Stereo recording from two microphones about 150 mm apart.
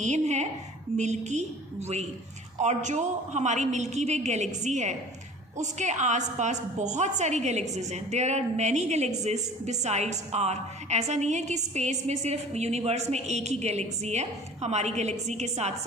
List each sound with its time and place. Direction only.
0.0 s a woman's voice: 50° right (ahead or behind)
2.6 s a woman's voice: 50° right (ahead or behind)